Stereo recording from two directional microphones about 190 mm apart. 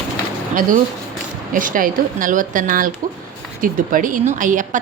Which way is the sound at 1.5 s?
45° right (ahead or behind).